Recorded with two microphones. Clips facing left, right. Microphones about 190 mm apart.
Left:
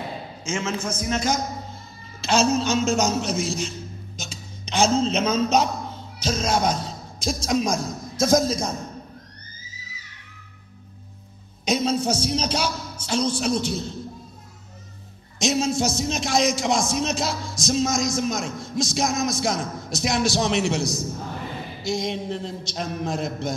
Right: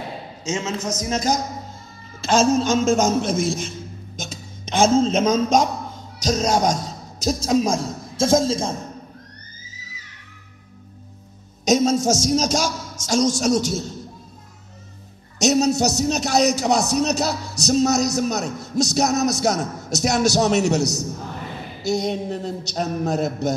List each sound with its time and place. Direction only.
0.7 s a man's voice: 40° right (ahead or behind)
2.2 s a man's voice: 50° right (ahead or behind); by 8.7 s 25° right (ahead or behind)
11.6 s a man's voice: 45° right (ahead or behind)
15.3 s a man's voice: 40° right (ahead or behind)